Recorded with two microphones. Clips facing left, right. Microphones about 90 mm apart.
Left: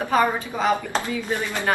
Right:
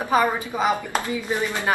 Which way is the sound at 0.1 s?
15° right (ahead or behind).